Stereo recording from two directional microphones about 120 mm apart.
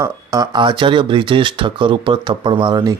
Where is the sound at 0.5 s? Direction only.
40° right (ahead or behind).